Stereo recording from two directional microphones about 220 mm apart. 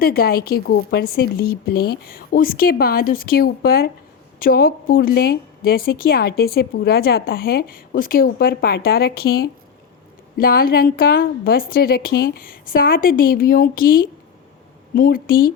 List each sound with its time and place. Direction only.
0.0 s a woman's voice: 45° left (ahead or behind)